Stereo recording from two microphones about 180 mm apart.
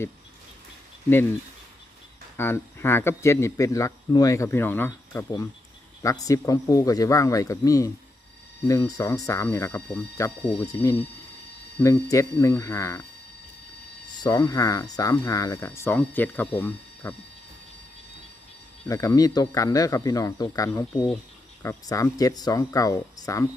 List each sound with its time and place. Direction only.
2.4 s speech: 15° left (ahead or behind)
14.2 s speech: 20° left (ahead or behind)
18.9 s speech: 20° left (ahead or behind)